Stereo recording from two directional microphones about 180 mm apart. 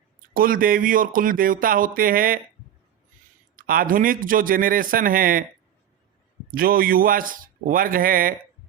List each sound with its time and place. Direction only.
0.3 s speech: 50° right (ahead or behind)
3.5 s speech: 50° right (ahead or behind)
6.5 s speech: 55° right (ahead or behind)